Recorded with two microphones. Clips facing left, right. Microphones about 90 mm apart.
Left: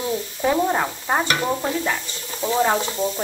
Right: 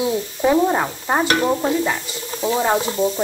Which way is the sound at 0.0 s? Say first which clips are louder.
Right 4 dB; 10° right (ahead or behind).